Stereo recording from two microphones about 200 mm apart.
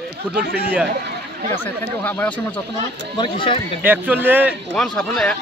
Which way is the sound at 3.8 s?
10° right (ahead or behind).